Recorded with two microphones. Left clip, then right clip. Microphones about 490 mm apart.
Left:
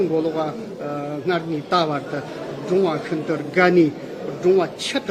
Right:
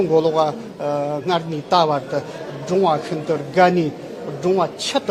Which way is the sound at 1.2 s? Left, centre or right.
Centre.